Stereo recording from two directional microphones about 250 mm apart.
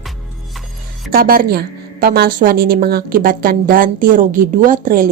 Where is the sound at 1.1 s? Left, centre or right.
Right.